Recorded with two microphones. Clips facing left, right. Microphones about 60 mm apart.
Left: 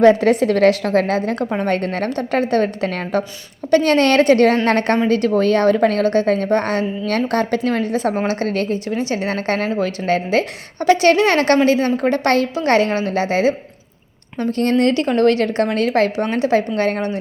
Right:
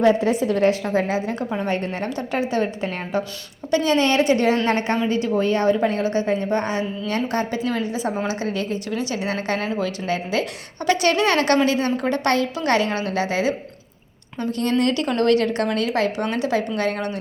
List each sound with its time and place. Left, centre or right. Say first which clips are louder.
0.0 s a woman's voice: left 6 dB; left
8.9 s a woman's voice: left 4 dB; left